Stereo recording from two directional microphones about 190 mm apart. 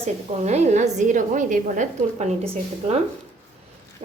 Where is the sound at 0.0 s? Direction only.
35° right (ahead or behind).